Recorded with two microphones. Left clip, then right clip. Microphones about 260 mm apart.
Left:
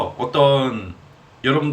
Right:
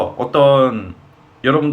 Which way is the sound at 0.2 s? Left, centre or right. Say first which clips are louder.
Right 5 dB; centre.